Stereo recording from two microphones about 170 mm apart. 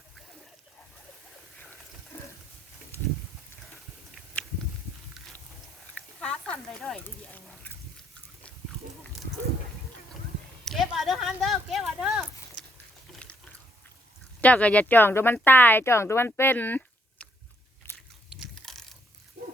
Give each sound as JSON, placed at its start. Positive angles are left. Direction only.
{"t": 4.4, "sound": "a sound", "side_deg": 5}
{"t": 6.2, "sound": "a sound", "side_deg": 5}
{"t": 10.7, "sound": "speech", "side_deg": 0}
{"t": 13.2, "sound": "water", "side_deg": 5}
{"t": 14.4, "sound": "speech", "side_deg": 10}
{"t": 17.8, "sound": "biting", "side_deg": 10}
{"t": 18.3, "sound": "biting", "side_deg": 0}